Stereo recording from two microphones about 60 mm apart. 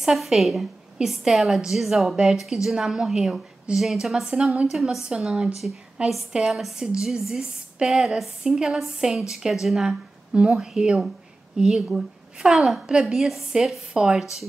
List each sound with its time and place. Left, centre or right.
0.0 s a woman's voice: centre
6.3 s a woman's voice: centre